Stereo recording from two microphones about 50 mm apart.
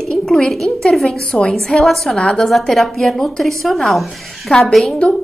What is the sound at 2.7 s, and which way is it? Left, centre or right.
A woman's voice, centre.